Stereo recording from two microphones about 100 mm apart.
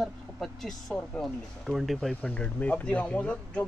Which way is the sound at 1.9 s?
10° left (ahead or behind).